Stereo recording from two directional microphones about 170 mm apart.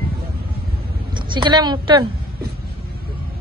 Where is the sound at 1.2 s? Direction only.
30° right (ahead or behind).